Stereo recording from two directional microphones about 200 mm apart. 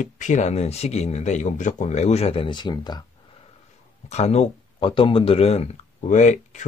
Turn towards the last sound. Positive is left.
turn(degrees=35)  # may be behind; listen again after turning